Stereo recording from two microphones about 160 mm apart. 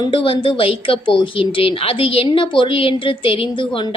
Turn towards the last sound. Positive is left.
turn(degrees=35)  # may be behind; listen again after turning